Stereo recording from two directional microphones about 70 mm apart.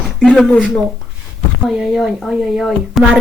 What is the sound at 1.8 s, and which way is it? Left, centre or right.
Speech, centre.